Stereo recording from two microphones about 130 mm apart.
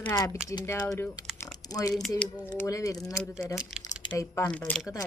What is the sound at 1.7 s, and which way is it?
Speech, 25° left (ahead or behind).